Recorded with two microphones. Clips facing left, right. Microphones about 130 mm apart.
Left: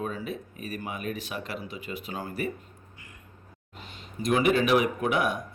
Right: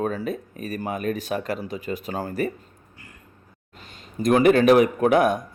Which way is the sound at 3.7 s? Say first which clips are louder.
Right 5 dB; 45° right (ahead or behind).